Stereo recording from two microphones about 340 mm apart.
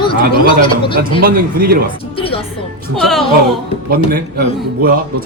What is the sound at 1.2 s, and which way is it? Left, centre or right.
Speech, right.